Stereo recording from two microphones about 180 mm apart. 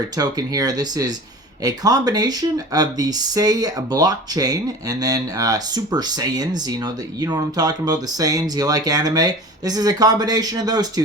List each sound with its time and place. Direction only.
0.2 s speech: 20° right (ahead or behind)